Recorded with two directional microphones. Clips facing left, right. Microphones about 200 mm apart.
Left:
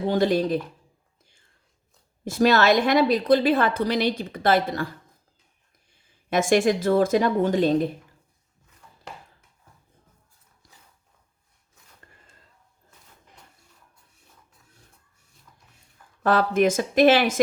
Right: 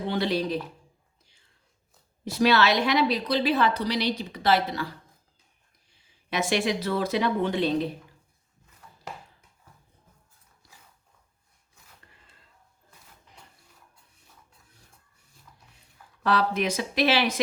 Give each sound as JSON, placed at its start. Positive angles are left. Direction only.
{"t": 0.1, "sound": "a woman's voice", "side_deg": 45}
{"t": 2.2, "sound": "a woman's voice", "side_deg": 50}
{"t": 16.2, "sound": "a woman's voice", "side_deg": 50}